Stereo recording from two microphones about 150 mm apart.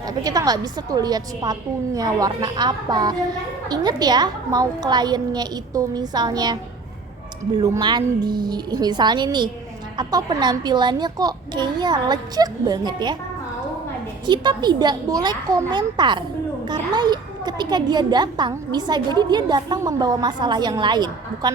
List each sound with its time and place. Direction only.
0.1 s a woman's voice: 25° right (ahead or behind)
7.6 s a woman's voice: 25° right (ahead or behind)
14.3 s a woman's voice: 30° right (ahead or behind)